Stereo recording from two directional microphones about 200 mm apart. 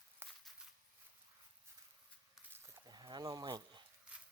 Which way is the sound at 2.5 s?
10° right (ahead or behind).